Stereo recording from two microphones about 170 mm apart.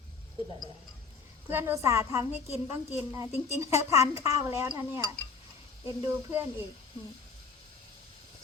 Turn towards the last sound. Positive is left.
turn(degrees=-15)  # may be behind; listen again after turning